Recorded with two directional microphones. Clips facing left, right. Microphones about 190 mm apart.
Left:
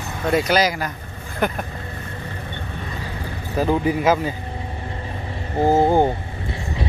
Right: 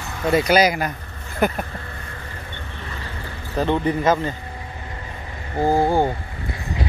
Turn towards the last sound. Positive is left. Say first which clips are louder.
# left 2 dB
turn(degrees=20)  # may be behind; listen again after turning